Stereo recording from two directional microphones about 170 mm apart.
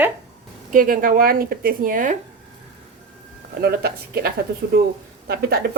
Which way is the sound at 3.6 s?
65° right (ahead or behind).